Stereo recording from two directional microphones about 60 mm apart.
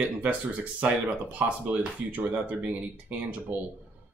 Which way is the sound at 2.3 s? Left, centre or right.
Right.